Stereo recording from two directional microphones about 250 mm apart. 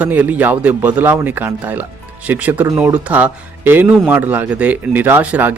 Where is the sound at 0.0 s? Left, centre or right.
Centre.